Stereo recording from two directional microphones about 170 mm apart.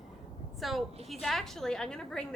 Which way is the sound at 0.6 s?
Centre (ahead or behind).